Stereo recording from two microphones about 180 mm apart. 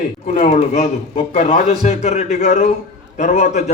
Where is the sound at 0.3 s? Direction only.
40° left (ahead or behind).